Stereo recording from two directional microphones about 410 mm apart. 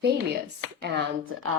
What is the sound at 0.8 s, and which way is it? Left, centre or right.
Speech, right.